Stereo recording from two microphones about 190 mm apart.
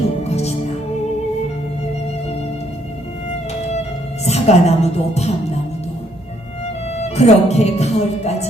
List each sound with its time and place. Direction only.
0.3 s music: 35° left (ahead or behind)
4.3 s speech: 35° left (ahead or behind)
6.9 s speech: 35° left (ahead or behind)